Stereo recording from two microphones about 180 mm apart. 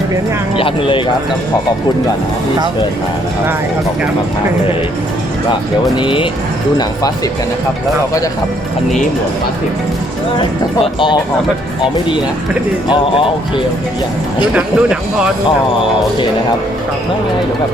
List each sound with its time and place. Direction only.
0.5 s speech: 30° left (ahead or behind)
6.0 s speech: 30° left (ahead or behind)
14.5 s speech: 5° right (ahead or behind)